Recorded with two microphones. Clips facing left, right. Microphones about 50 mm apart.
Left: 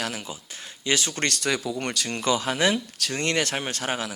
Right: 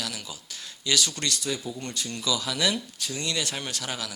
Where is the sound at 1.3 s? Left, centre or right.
Left.